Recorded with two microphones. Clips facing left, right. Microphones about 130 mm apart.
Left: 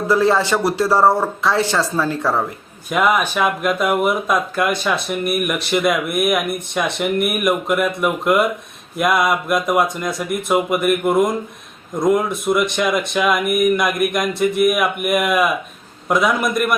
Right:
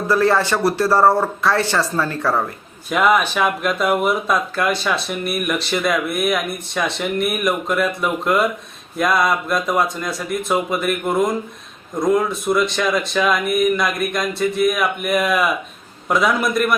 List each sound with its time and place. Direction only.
0.1 s speech: 15° left (ahead or behind)